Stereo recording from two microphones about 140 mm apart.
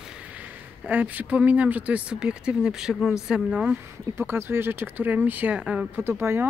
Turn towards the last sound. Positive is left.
turn(degrees=-15)  # may be behind; listen again after turning